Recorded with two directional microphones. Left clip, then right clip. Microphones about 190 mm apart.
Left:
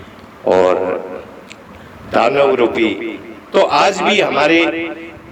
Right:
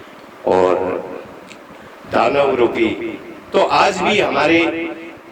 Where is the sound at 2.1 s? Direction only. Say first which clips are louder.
Left 2 dB; 25° left (ahead or behind).